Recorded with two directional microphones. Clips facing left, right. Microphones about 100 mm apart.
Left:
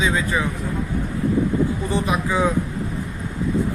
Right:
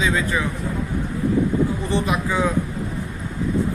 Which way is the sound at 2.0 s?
25° left (ahead or behind).